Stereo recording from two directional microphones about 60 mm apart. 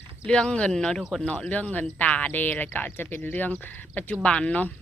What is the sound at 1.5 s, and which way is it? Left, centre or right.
Speech, left.